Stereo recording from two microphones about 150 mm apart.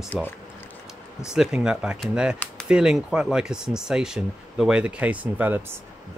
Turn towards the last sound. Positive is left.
turn(degrees=-10)  # may be behind; listen again after turning